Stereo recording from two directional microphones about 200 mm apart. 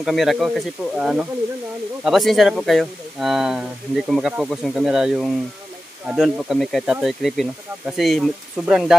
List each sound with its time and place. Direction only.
0.0 s speech: centre (ahead or behind)